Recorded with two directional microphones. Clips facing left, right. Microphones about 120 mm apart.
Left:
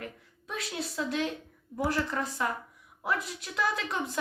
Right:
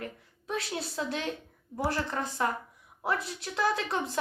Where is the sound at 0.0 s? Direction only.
30° right (ahead or behind).